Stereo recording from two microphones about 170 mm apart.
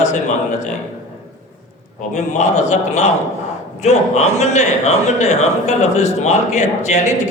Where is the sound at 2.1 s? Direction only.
45° left (ahead or behind).